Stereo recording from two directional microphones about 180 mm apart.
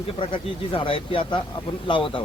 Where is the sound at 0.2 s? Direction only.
30° left (ahead or behind).